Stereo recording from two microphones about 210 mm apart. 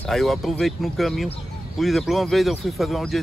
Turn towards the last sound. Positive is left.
turn(degrees=0)  # may be behind; listen again after turning